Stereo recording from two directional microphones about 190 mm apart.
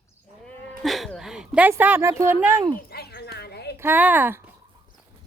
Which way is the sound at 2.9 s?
60° left (ahead or behind).